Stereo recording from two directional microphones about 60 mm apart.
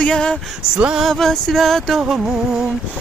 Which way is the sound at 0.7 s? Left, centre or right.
Centre.